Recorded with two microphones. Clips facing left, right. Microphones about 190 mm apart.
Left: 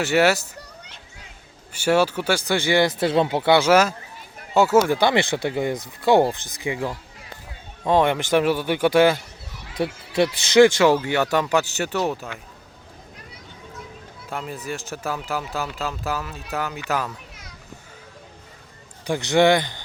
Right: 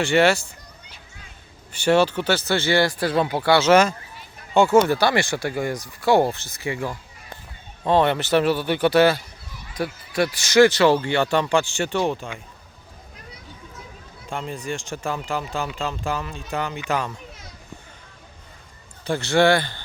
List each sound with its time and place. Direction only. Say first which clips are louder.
0.0 s speech: right 1 dB; 5° left (ahead or behind)
1.7 s speech: right 1 dB; 10° left (ahead or behind)
3.7 s speech: right 1 dB; 5° left (ahead or behind)
4.9 s speech: left 1 dB; 20° left (ahead or behind)
9.7 s speech: left 2 dB; 25° left (ahead or behind)
10.8 s speech: even; 10° left (ahead or behind)
14.3 s speech: right 1 dB; 5° left (ahead or behind)
19.0 s speech: left 1 dB; 15° left (ahead or behind)